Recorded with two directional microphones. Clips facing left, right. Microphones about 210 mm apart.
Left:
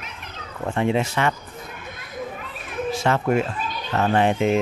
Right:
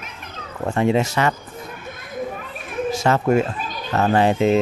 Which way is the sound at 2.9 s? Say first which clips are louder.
Right 3 dB; 40° right (ahead or behind).